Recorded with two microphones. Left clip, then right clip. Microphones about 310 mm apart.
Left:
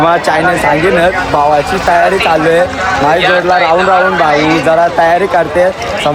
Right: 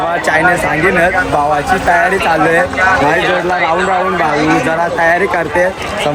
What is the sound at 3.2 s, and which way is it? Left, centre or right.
Speech, left.